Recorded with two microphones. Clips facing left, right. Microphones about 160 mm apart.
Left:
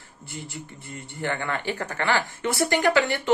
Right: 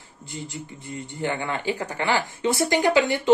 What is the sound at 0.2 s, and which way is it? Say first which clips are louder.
Speech: right 2 dB; 15° right (ahead or behind).